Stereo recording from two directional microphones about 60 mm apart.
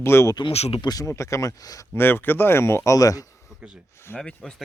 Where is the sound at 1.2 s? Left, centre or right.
Left.